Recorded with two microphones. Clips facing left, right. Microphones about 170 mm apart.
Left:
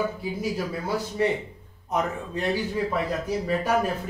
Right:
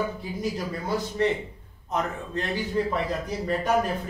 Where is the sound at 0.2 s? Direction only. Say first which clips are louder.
Left 2 dB; 5° left (ahead or behind).